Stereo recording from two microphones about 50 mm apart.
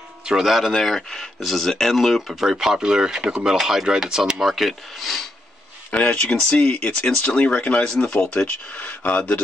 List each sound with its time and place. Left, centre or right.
0.3 s speech: centre
5.9 s speech: left
8.4 s speech: left